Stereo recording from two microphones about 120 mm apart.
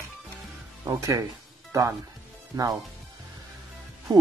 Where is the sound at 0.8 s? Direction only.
30° right (ahead or behind).